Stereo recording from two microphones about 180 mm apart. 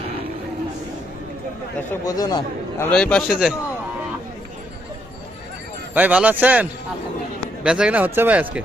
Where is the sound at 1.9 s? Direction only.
20° left (ahead or behind).